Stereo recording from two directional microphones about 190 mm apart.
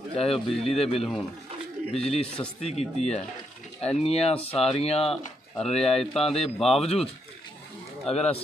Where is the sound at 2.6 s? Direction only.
35° left (ahead or behind).